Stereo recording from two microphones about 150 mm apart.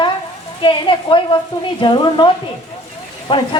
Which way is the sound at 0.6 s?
35° left (ahead or behind).